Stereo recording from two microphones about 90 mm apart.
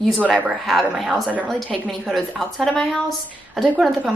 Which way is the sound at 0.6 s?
Centre (ahead or behind).